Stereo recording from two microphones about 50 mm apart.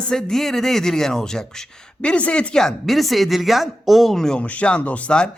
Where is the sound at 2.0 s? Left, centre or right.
Left.